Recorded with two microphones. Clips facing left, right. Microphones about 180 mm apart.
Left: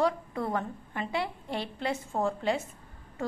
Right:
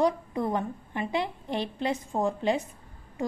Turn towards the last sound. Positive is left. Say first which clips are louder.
# right 2 dB
turn(degrees=-15)  # may be behind; listen again after turning